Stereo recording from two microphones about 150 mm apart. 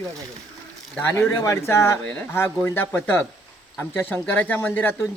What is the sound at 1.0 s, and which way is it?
Speech, 15° left (ahead or behind).